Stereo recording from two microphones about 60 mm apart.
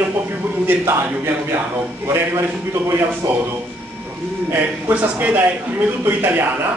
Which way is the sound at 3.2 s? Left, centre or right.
Right.